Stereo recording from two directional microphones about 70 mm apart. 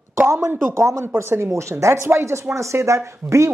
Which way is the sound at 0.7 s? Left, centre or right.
Right.